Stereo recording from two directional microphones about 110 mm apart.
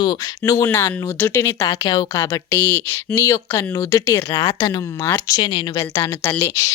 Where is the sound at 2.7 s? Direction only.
20° left (ahead or behind).